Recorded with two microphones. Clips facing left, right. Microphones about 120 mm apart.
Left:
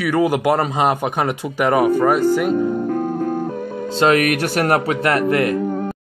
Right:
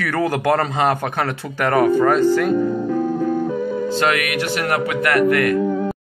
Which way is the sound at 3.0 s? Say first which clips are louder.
Right 1 dB; 50° left (ahead or behind).